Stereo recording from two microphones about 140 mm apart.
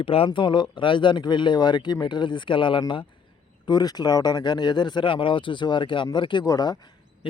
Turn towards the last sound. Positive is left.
turn(degrees=30)  # may be behind; listen again after turning